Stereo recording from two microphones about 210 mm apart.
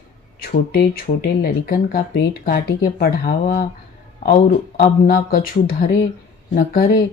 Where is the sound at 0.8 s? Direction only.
45° left (ahead or behind).